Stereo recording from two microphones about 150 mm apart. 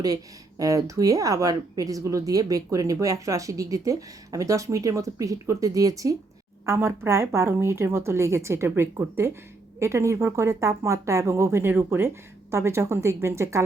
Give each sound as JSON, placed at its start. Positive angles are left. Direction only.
{"t": 0.6, "sound": "a woman's voice", "side_deg": -20}